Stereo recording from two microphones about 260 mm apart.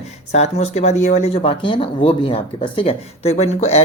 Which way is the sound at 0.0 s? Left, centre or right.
Left.